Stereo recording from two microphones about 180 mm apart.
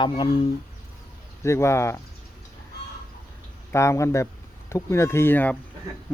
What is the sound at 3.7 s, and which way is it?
Speech, 15° left (ahead or behind).